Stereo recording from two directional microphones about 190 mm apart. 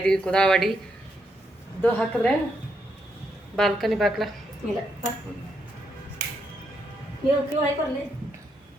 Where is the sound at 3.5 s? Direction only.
Centre (ahead or behind).